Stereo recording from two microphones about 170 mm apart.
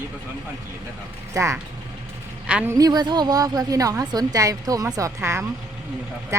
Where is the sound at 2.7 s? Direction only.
25° right (ahead or behind).